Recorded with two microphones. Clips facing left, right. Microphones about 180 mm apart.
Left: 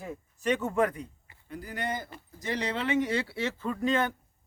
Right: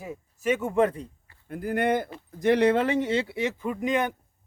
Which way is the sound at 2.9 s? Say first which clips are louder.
Right 3 dB; 25° right (ahead or behind).